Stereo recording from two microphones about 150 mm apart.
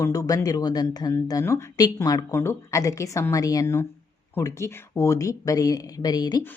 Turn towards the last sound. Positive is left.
turn(degrees=25)  # may be behind; listen again after turning